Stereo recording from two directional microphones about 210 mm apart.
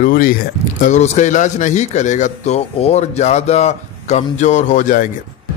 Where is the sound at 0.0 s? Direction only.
40° left (ahead or behind).